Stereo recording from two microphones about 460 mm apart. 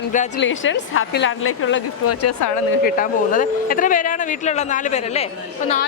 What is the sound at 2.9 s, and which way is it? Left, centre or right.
Speech, centre.